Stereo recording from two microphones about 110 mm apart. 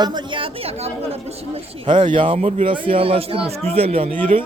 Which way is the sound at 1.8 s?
45° right (ahead or behind).